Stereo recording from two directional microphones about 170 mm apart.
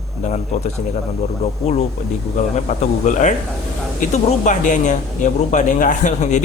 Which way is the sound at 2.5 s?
45° left (ahead or behind).